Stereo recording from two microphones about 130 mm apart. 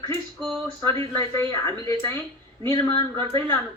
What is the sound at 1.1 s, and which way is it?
Speech, 20° left (ahead or behind).